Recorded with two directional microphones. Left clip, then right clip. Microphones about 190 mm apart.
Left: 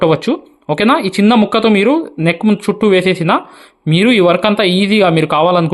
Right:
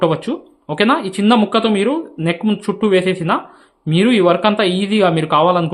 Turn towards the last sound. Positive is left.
turn(degrees=30)  # may be behind; listen again after turning